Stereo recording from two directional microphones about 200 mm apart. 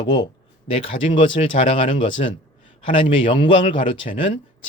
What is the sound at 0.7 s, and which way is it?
Speech, 25° left (ahead or behind).